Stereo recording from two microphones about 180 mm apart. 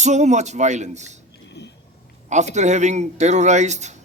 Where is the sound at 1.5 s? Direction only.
75° left (ahead or behind).